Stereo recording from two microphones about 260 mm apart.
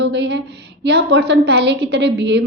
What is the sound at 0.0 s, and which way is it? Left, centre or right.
A woman's voice, right.